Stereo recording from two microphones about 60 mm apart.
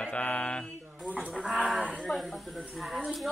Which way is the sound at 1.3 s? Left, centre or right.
Centre.